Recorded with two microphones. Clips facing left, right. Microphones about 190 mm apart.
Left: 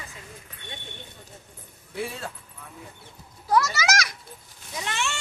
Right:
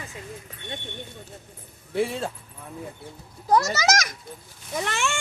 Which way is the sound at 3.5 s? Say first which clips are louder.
Right 2 dB; 40° right (ahead or behind).